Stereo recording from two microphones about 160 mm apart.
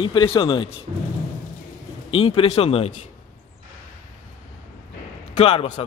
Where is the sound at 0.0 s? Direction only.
30° left (ahead or behind).